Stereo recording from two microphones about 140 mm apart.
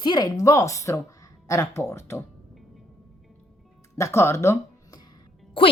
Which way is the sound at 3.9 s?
20° left (ahead or behind).